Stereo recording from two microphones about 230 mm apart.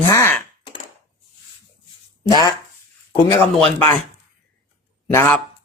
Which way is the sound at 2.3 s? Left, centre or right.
Centre.